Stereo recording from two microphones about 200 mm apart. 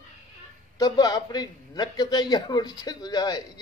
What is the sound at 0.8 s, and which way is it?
A man's voice, 20° left (ahead or behind).